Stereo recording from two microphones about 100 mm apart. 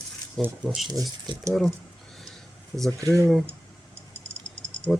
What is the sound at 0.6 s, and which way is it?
Speech, 5° right (ahead or behind).